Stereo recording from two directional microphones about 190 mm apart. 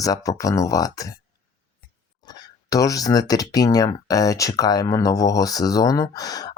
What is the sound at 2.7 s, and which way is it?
Speech, 20° left (ahead or behind).